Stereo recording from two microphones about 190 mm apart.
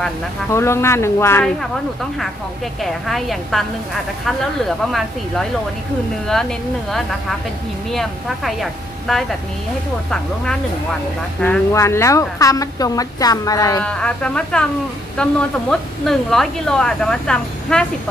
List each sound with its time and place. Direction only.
0.5 s a woman's voice: 15° left (ahead or behind)
2.8 s a woman's voice: centre (ahead or behind)
4.6 s a woman's voice: centre (ahead or behind)
7.9 s a woman's voice: centre (ahead or behind); by 13.8 s 20° left (ahead or behind)
13.8 s a woman's voice: 5° left (ahead or behind)